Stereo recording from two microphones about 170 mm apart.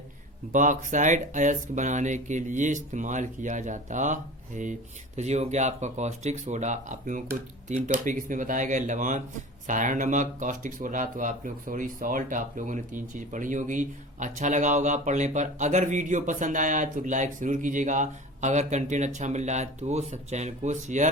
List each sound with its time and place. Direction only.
0.5 s speech: 50° right (ahead or behind)